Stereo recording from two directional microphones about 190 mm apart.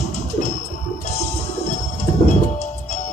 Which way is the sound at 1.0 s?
35° left (ahead or behind).